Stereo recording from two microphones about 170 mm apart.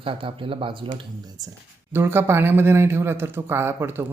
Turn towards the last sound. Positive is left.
turn(degrees=-15)  # may be behind; listen again after turning